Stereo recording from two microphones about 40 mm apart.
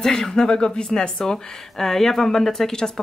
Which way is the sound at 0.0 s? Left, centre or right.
Centre.